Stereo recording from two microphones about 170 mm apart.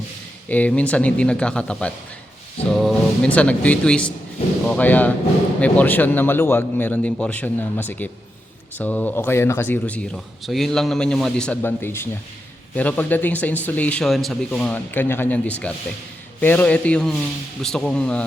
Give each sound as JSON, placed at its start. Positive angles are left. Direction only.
{"t": 0.4, "sound": "speech", "side_deg": 10}